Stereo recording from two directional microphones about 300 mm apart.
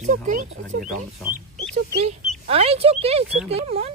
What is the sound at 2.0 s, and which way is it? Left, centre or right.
Speech, right.